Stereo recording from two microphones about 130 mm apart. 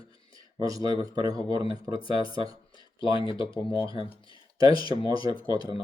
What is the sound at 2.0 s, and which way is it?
Speech, 40° left (ahead or behind).